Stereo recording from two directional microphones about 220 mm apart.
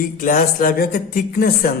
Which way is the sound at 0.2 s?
40° left (ahead or behind).